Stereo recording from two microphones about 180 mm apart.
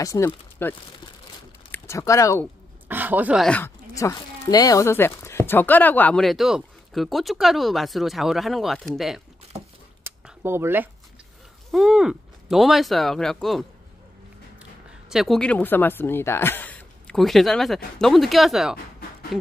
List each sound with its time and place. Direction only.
0.0 s speech: 15° left (ahead or behind)
2.9 s speech: 10° right (ahead or behind)
3.4 s speech: 10° left (ahead or behind)
10.0 s a sound: 15° right (ahead or behind)
11.7 s speech: centre (ahead or behind)